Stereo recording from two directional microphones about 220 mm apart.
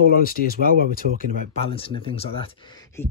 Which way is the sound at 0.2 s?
40° left (ahead or behind).